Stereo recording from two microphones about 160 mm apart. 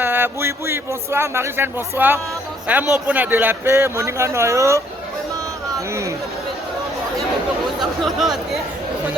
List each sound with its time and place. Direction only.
0.0 s speech: 15° right (ahead or behind)
5.9 s speech: 20° right (ahead or behind)
7.8 s speech: centre (ahead or behind)